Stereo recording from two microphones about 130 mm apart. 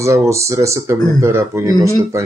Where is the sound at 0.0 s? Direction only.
25° right (ahead or behind).